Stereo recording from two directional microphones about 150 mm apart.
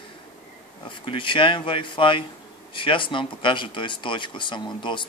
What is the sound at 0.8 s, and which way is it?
Speech, 35° left (ahead or behind).